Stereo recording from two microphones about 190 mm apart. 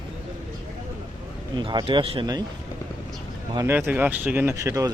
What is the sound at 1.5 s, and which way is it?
Speech, 25° right (ahead or behind).